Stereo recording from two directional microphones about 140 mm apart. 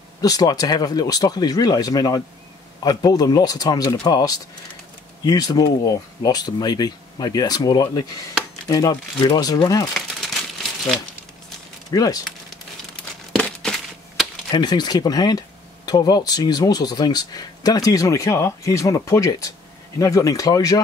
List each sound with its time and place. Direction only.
0.2 s speech: 25° left (ahead or behind)
11.9 s speech: 25° left (ahead or behind)
13.4 s crack: 5° left (ahead or behind)
14.5 s speech: 30° left (ahead or behind)